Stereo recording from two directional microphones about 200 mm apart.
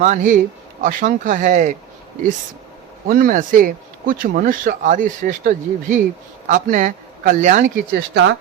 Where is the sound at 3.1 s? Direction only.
45° right (ahead or behind).